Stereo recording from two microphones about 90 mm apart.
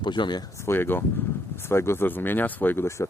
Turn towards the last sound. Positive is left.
turn(degrees=25)  # may be behind; listen again after turning